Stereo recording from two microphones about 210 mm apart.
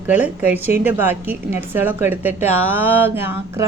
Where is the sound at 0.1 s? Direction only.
10° right (ahead or behind).